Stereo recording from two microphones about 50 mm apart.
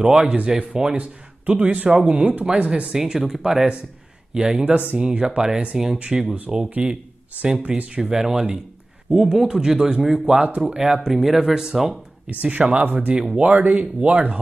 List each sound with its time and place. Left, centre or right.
0.0 s speech: centre
2.9 s speech: centre
10.3 s speech: right; by 12.0 s centre
12.3 s speech: right
12.8 s speech: right